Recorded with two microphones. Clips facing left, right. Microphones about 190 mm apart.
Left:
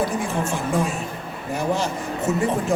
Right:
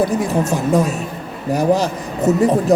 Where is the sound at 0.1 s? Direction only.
40° right (ahead or behind).